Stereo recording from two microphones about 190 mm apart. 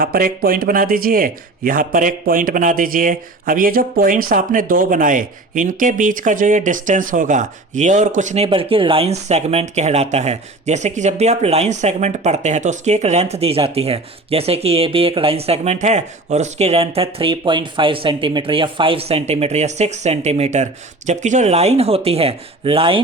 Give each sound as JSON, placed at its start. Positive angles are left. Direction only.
{"t": 0.0, "sound": "speech", "side_deg": -50}
{"t": 8.4, "sound": "speech", "side_deg": -30}